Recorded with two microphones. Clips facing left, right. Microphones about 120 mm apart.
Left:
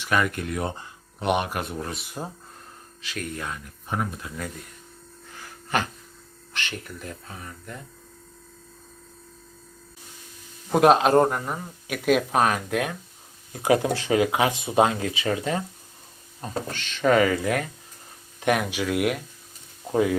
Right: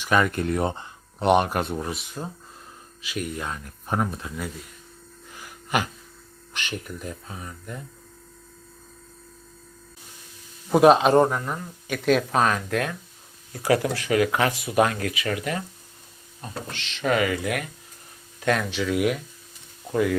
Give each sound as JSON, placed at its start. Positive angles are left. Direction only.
{"t": 0.0, "sound": "speech", "side_deg": -30}
{"t": 2.2, "sound": "speech", "side_deg": 20}
{"t": 3.0, "sound": "speech", "side_deg": -15}
{"t": 3.5, "sound": "speech", "side_deg": -35}
{"t": 5.3, "sound": "a sound", "side_deg": -15}
{"t": 6.5, "sound": "speech", "side_deg": -15}
{"t": 10.7, "sound": "speech", "side_deg": 0}
{"t": 16.4, "sound": "speech", "side_deg": 45}
{"t": 18.4, "sound": "speech", "side_deg": 15}
{"t": 19.9, "sound": "speech", "side_deg": 30}